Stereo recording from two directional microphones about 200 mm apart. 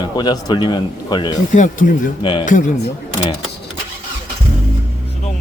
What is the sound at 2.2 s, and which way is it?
Speech, 25° left (ahead or behind).